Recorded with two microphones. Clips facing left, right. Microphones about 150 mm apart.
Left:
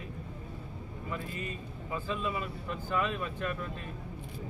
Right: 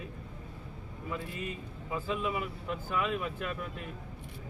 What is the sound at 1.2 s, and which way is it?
Speech, 85° right.